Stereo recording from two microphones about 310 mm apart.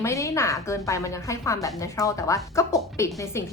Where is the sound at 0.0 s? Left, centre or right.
Centre.